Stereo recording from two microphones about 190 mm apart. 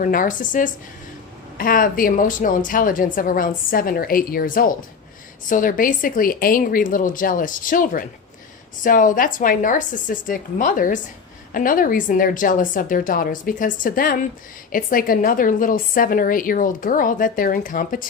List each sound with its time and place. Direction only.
0.0 s a woman's voice: 45° left (ahead or behind)